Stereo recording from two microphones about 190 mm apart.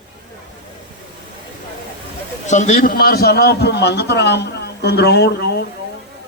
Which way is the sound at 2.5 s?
40° left (ahead or behind).